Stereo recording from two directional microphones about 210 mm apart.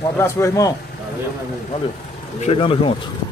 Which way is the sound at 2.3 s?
30° left (ahead or behind).